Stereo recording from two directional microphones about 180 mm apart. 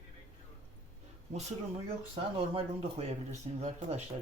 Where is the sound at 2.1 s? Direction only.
30° right (ahead or behind).